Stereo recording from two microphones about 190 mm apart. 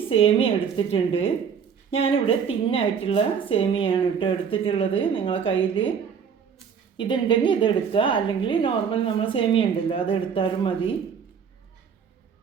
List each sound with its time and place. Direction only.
0.1 s a woman's voice: 30° left (ahead or behind)
6.9 s a woman's voice: 25° left (ahead or behind)